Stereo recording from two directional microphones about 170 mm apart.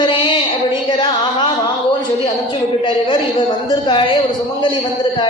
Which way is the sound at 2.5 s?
30° left (ahead or behind).